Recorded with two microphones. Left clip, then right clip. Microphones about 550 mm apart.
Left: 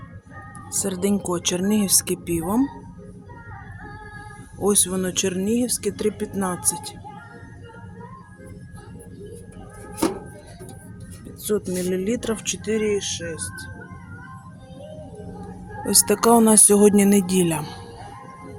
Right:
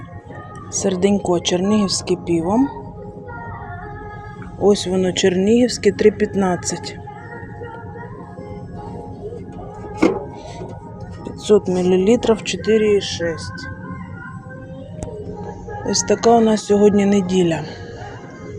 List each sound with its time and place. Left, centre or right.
0.8 s speech: left
4.6 s speech: left
11.4 s speech: left
15.9 s speech: left